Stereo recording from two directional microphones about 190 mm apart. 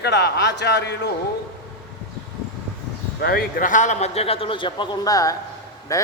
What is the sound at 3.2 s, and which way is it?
A man's voice, 50° left (ahead or behind).